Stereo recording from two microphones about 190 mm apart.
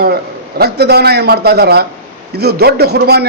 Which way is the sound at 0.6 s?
55° right (ahead or behind).